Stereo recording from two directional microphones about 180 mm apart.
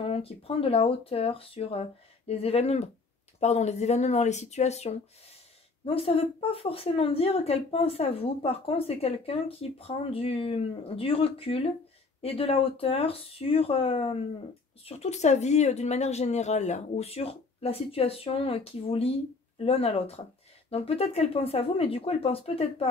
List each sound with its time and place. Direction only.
0.0 s speech: 30° left (ahead or behind)